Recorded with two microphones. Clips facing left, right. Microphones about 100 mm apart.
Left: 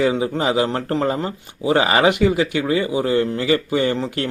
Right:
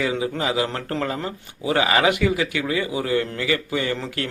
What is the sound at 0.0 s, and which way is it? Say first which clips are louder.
Speech: left 5 dB; 30° left (ahead or behind).